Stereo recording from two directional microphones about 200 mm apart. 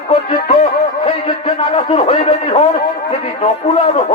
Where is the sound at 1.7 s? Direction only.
30° left (ahead or behind).